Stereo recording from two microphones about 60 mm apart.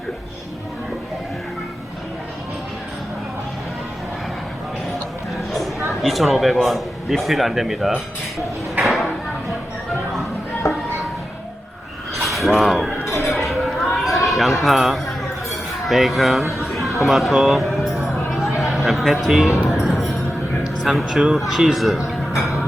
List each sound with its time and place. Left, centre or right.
5.9 s speech: centre
8.8 s a sound: centre
10.6 s music: left
12.2 s a sound: centre
14.3 s a man's voice: centre
18.7 s music: centre
21.1 s speech: centre
22.4 s music: centre